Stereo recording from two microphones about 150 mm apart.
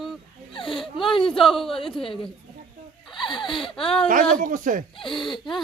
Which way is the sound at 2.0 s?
35° left (ahead or behind).